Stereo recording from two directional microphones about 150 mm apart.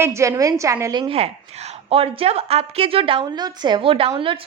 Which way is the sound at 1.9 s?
40° right (ahead or behind).